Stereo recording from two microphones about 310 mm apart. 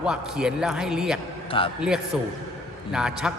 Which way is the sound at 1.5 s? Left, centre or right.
Centre.